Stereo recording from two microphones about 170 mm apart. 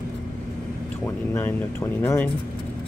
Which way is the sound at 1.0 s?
10° left (ahead or behind).